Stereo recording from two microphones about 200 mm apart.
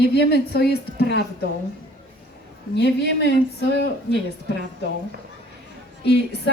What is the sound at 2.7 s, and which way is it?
A woman's voice, 60° left (ahead or behind).